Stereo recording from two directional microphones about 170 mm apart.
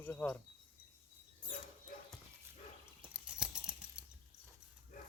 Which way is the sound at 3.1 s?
5° right (ahead or behind).